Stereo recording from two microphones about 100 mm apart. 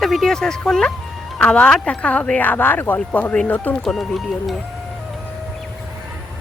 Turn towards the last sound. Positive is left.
turn(degrees=0)  # may be behind; listen again after turning